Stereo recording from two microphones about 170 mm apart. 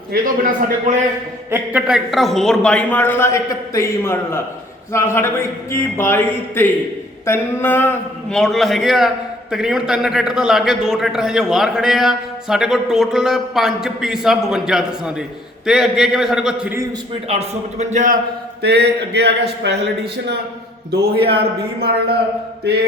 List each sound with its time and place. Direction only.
0.1 s a man's voice: 50° right (ahead or behind)
1.5 s a man's voice: 10° right (ahead or behind)
17.2 s a man's voice: 35° right (ahead or behind)
18.6 s speech: 75° right (ahead or behind)
21.0 s speech: 70° right (ahead or behind)